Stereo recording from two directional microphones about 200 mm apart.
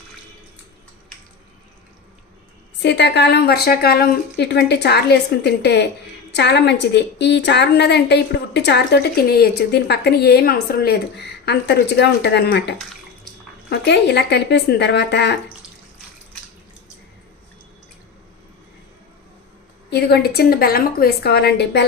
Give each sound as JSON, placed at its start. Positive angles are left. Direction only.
{"t": 2.8, "sound": "a woman's voice", "side_deg": 55}
{"t": 19.9, "sound": "a woman's voice", "side_deg": 50}